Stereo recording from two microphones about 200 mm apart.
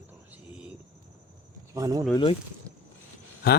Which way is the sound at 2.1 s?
25° left (ahead or behind).